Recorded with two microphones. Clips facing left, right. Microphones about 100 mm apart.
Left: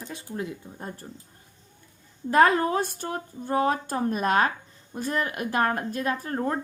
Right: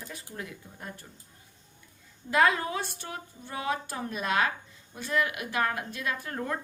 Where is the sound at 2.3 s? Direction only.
45° left (ahead or behind).